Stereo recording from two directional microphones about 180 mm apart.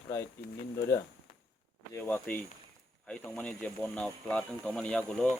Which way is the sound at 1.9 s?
10° left (ahead or behind).